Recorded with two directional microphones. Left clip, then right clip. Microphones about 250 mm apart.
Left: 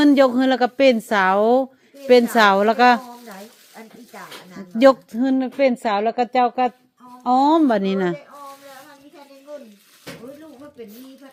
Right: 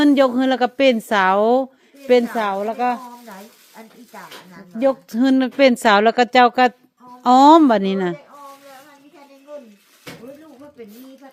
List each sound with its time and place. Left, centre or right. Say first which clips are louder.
0.0 s a woman's voice: even; centre
2.3 s a woman's voice: left 7 dB; centre
5.1 s speech: right 4 dB; centre
7.7 s a woman's voice: right 2 dB; centre
10.8 s speech: left 1 dB; centre